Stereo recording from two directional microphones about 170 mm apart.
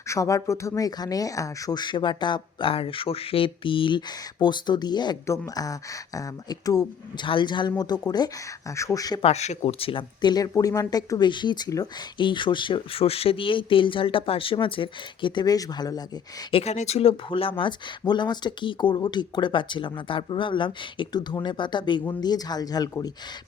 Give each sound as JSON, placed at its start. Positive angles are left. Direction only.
{"t": 0.1, "sound": "speech", "side_deg": 20}
{"t": 9.2, "sound": "speech", "side_deg": 40}
{"t": 16.5, "sound": "speech", "side_deg": 35}